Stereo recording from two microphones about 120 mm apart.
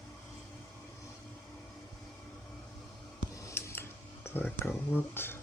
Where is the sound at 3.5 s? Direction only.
20° left (ahead or behind).